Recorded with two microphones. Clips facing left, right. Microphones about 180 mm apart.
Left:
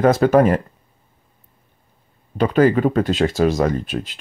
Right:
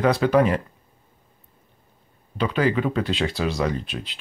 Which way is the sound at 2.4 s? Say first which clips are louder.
Left 7 dB; 45° left (ahead or behind).